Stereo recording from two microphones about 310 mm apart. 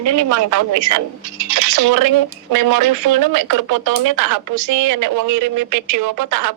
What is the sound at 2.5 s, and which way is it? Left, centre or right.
Speech, right.